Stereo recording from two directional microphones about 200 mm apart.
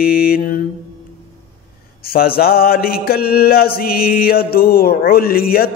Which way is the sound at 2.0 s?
50° left (ahead or behind).